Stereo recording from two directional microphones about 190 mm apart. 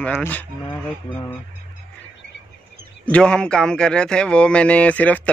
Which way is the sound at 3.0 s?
5° left (ahead or behind).